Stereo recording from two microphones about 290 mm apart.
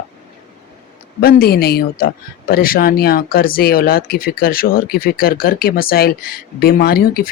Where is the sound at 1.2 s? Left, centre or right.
Left.